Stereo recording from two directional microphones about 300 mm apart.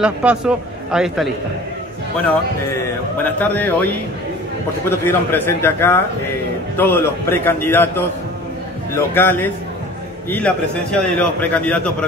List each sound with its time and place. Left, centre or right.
0.0 s a man's voice: centre
3.3 s a man's voice: centre